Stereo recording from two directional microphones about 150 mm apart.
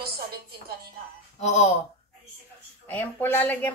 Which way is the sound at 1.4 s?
50° left (ahead or behind).